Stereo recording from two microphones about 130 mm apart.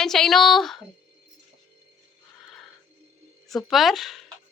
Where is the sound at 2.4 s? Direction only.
Centre (ahead or behind).